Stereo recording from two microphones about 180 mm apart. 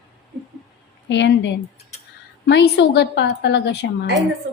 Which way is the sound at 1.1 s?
85° left.